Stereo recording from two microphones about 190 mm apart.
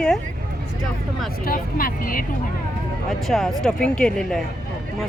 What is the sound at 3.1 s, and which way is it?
Speech, centre (ahead or behind).